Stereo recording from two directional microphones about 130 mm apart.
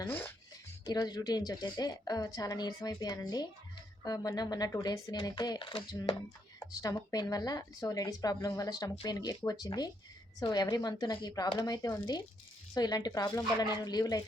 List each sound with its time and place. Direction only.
0.0 s speech: 15° left (ahead or behind)
0.9 s a woman's voice: 30° left (ahead or behind)